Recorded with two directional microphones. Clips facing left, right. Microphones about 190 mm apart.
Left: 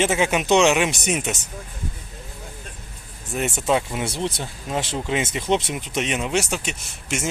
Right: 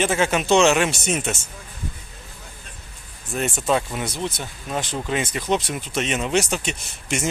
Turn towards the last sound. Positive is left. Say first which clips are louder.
# right 1 dB
turn(degrees=5)  # may be behind; listen again after turning